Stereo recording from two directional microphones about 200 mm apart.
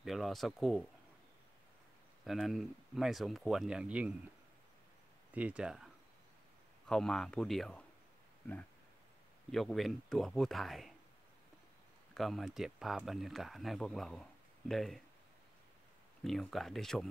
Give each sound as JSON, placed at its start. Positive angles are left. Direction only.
{"t": 0.0, "sound": "speech", "side_deg": 0}
{"t": 2.2, "sound": "speech", "side_deg": 0}
{"t": 5.3, "sound": "speech", "side_deg": -5}
{"t": 6.9, "sound": "speech", "side_deg": 5}
{"t": 9.5, "sound": "speech", "side_deg": 0}
{"t": 12.1, "sound": "speech", "side_deg": 0}
{"t": 16.3, "sound": "speech", "side_deg": 0}